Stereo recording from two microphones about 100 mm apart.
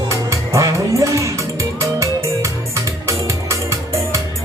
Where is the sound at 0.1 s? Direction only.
30° right (ahead or behind).